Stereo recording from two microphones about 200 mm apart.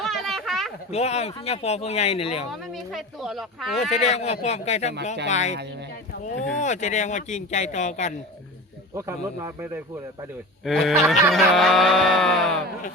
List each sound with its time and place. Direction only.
0.0 s a sound: centre (ahead or behind)
0.9 s speech: 30° left (ahead or behind)
2.5 s speech: centre (ahead or behind)
3.9 s speech: 35° left (ahead or behind)
9.0 s speech: 10° right (ahead or behind)
10.7 s speech: centre (ahead or behind)